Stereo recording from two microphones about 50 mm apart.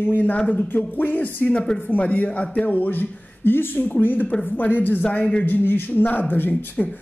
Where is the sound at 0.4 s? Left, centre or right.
Left.